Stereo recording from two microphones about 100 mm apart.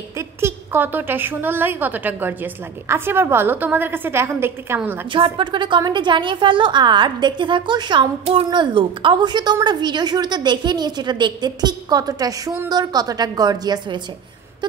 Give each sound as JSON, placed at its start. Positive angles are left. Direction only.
{"t": 0.4, "sound": "a woman's voice", "side_deg": -25}
{"t": 5.1, "sound": "a woman's voice", "side_deg": -55}